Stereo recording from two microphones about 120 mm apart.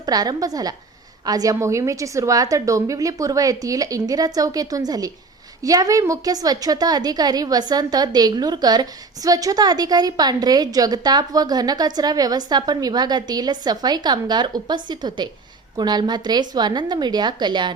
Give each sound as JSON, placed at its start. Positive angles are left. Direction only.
{"t": 0.0, "sound": "a woman's voice", "side_deg": -35}